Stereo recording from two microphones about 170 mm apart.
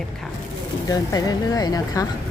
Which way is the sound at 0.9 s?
20° left (ahead or behind).